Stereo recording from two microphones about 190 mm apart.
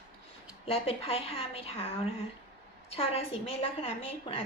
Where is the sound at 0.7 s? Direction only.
30° left (ahead or behind).